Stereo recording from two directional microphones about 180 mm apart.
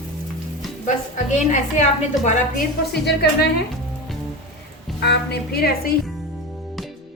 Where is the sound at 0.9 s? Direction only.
40° left (ahead or behind).